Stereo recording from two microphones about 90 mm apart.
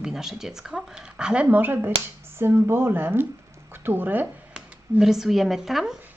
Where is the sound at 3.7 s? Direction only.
25° right (ahead or behind).